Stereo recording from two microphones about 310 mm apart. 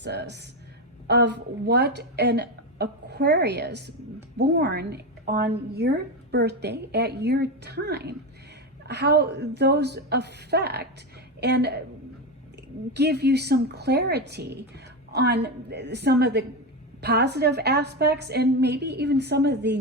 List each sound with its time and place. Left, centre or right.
0.0 s a woman's voice: right
12.9 s a woman's voice: right